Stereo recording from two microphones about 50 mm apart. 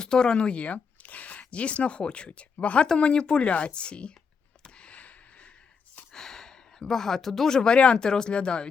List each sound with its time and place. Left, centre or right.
0.0 s speech: centre
2.8 s speech: centre
4.6 s a sound: left
6.1 s speech: centre